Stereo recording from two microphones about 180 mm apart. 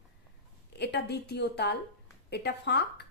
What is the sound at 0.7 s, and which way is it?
A woman's voice, 65° left (ahead or behind).